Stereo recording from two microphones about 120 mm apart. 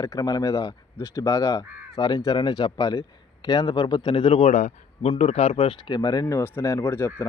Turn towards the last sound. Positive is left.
turn(degrees=20)  # may be behind; listen again after turning